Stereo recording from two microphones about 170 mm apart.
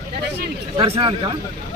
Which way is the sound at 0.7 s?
35° right (ahead or behind).